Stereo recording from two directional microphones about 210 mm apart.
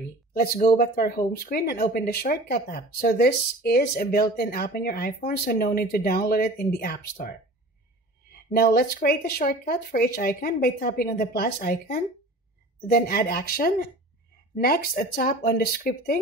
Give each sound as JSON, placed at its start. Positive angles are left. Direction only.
{"t": 0.3, "sound": "speech", "side_deg": 50}
{"t": 8.5, "sound": "speech", "side_deg": 50}